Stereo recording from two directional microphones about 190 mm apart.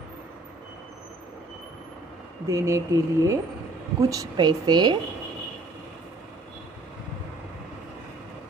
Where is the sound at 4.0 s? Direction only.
20° right (ahead or behind).